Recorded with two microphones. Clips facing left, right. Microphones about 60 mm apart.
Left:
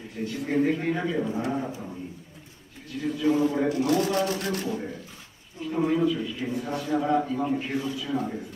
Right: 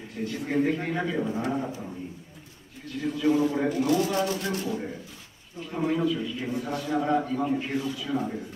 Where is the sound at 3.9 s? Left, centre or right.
Left.